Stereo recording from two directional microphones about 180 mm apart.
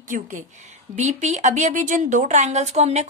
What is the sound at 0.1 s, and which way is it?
A woman's voice, 45° right (ahead or behind).